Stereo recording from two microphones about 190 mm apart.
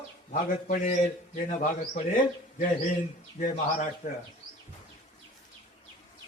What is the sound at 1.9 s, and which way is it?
A man's voice, 40° left (ahead or behind).